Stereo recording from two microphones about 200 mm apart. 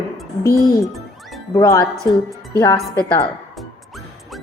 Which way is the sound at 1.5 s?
20° left (ahead or behind).